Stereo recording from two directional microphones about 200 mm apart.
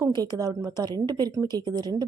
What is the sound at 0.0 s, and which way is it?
A woman's voice, 20° right (ahead or behind).